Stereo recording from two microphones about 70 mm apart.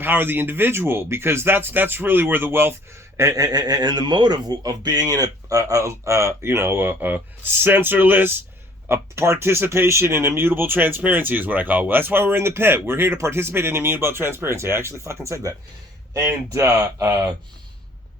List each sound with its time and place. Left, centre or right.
0.0 s speech: right
3.2 s speech: right
3.4 s speech: right
8.9 s speech: right